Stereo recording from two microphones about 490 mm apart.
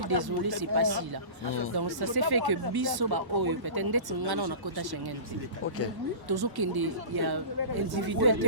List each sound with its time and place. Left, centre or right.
0.1 s speech: right
6.2 s speech: right